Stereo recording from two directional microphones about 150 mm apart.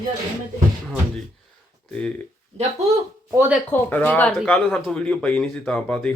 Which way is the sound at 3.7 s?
15° left (ahead or behind).